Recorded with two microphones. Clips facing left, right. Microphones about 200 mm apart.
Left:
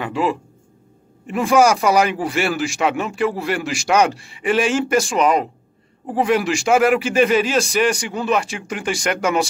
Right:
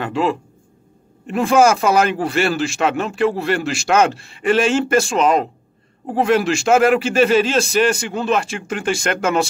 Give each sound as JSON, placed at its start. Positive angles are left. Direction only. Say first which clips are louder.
{"t": 0.0, "sound": "speech", "louder": "right 1 dB", "side_deg": 10}